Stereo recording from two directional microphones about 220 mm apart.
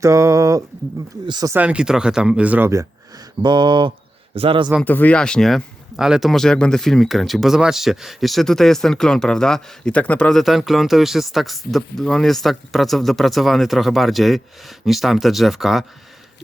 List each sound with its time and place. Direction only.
0.0 s speech: 15° right (ahead or behind)
3.4 s a sound: 20° right (ahead or behind)
4.7 s speech: 5° left (ahead or behind)